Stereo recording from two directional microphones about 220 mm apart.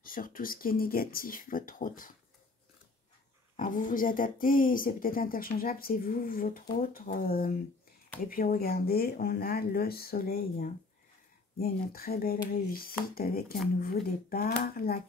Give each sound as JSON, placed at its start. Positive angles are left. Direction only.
{"t": 0.0, "sound": "speech", "side_deg": 40}
{"t": 3.5, "sound": "speech", "side_deg": 35}